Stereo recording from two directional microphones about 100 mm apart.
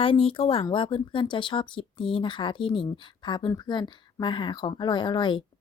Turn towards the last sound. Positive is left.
turn(degrees=50)  # may be behind; listen again after turning